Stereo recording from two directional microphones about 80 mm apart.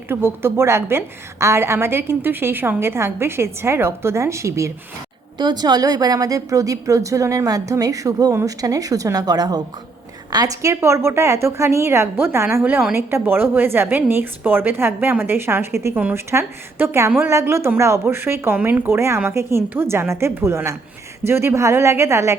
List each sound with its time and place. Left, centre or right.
0.1 s a woman's voice: right
5.4 s a woman's voice: right